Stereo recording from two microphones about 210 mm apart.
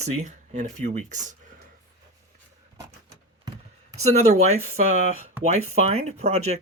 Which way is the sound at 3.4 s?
20° right (ahead or behind).